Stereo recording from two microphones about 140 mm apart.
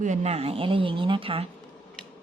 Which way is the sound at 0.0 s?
55° right (ahead or behind).